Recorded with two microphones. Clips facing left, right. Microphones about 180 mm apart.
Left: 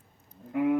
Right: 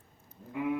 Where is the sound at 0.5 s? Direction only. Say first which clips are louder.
Left 7 dB; 60° left (ahead or behind).